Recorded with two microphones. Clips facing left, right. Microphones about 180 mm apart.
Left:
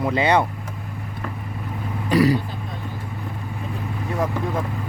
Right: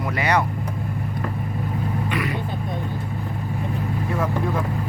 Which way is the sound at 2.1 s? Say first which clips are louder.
Left 13 dB; 35° left (ahead or behind).